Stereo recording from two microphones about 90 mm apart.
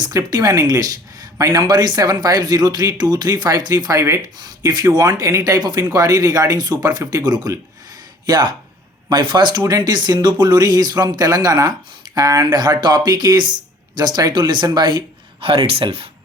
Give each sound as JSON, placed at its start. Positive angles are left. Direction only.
{"t": 0.0, "sound": "speech", "side_deg": -45}
{"t": 4.4, "sound": "speech", "side_deg": -45}